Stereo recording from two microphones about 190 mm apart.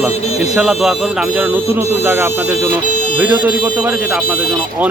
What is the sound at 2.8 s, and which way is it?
Music, 40° left (ahead or behind).